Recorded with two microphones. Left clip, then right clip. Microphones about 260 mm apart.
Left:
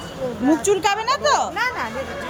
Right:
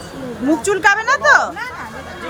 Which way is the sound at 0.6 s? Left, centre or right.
Right.